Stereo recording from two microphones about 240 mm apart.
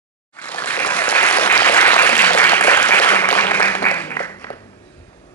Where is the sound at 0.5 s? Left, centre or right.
Centre.